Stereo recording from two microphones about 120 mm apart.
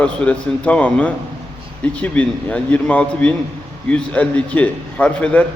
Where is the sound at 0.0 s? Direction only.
10° left (ahead or behind).